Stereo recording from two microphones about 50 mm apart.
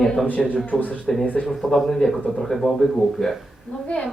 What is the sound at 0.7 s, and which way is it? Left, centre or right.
Speech, centre.